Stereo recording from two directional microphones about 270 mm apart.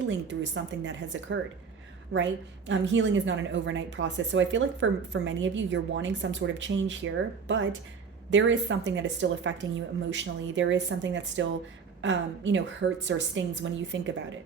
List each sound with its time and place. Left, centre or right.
0.1 s a woman's voice: right